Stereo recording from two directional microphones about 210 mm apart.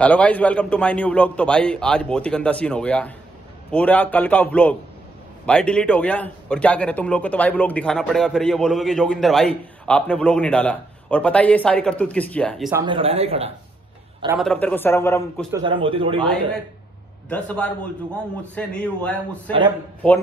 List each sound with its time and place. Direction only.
0.0 s a man's voice: 5° left (ahead or behind)
12.8 s speech: 25° right (ahead or behind)
14.4 s a man's voice: 5° left (ahead or behind)
15.5 s speech: 25° right (ahead or behind)
16.2 s a man's voice: 5° left (ahead or behind)